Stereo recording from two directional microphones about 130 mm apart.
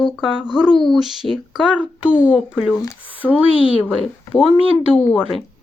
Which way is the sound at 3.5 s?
45° left (ahead or behind).